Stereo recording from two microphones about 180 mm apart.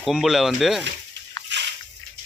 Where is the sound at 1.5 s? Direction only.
80° right.